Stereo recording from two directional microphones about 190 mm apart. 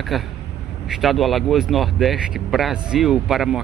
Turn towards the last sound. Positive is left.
turn(degrees=0)  # may be behind; listen again after turning